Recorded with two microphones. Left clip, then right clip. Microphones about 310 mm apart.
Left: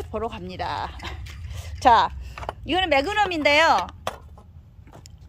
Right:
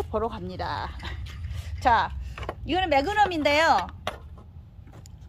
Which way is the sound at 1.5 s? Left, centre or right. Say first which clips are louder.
Left 5 dB; left.